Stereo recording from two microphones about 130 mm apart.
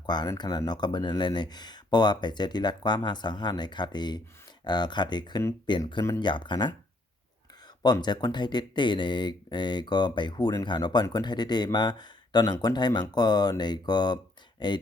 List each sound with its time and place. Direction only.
0.0 s speech: 35° left (ahead or behind)
7.8 s speech: 30° left (ahead or behind)